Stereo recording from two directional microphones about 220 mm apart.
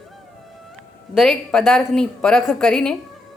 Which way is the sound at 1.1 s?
5° left (ahead or behind).